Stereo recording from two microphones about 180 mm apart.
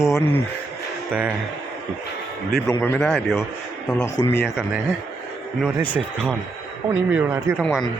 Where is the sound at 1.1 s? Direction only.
10° right (ahead or behind).